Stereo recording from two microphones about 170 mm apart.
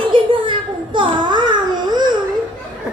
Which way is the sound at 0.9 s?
30° right (ahead or behind).